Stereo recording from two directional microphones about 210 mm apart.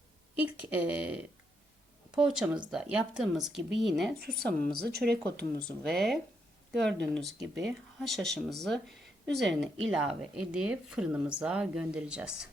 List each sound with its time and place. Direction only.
0.3 s a woman's voice: 10° right (ahead or behind)
4.9 s speech: 50° right (ahead or behind)
5.6 s a woman's voice: centre (ahead or behind)
7.4 s a woman's voice: 5° right (ahead or behind)